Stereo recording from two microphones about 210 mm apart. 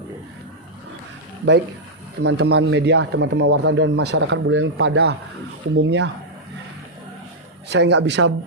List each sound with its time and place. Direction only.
2.2 s speech: 50° right (ahead or behind)
7.7 s speech: 55° right (ahead or behind)